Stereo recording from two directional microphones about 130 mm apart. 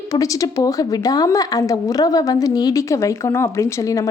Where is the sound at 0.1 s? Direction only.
25° left (ahead or behind).